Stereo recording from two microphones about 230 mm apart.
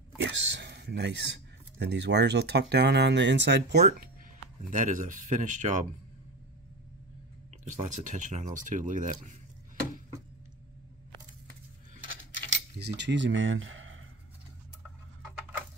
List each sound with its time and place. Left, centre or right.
0.2 s speech: right
4.6 s speech: right
7.6 s speech: right
12.7 s speech: right